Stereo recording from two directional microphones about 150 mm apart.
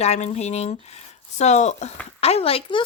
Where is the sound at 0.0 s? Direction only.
45° left (ahead or behind).